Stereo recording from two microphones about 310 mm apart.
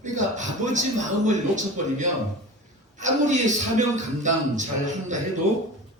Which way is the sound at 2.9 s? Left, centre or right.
Right.